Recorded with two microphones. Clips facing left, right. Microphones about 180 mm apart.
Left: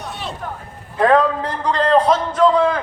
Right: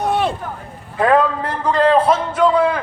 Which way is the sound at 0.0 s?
55° right (ahead or behind).